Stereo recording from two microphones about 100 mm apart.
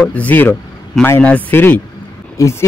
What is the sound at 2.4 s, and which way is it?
Speech, 30° left (ahead or behind).